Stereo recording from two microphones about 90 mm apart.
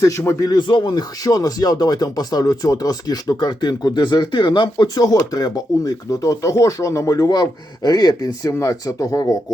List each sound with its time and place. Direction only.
0.0 s speech: 35° left (ahead or behind)
0.5 s speech: 60° left (ahead or behind)
5.0 s speech: 40° left (ahead or behind)